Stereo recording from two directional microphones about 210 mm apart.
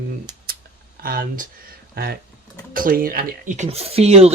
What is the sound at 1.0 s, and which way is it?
Speech, 45° right (ahead or behind).